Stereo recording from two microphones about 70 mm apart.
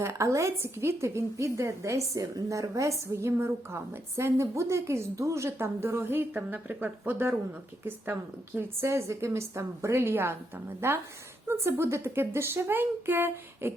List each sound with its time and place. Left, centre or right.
0.0 s a woman's voice: right
3.3 s a woman's voice: right
8.9 s a woman's voice: right